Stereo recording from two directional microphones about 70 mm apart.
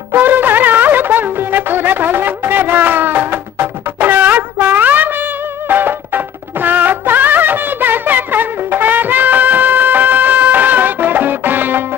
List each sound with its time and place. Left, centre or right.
0.1 s music: right